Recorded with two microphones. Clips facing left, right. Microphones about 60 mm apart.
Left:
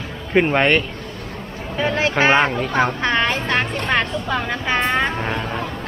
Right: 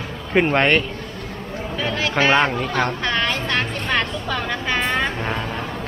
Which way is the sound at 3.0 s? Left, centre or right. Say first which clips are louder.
Left 3 dB; left.